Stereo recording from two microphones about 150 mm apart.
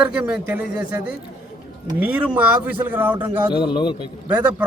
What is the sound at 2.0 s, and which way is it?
Speech, 10° right (ahead or behind).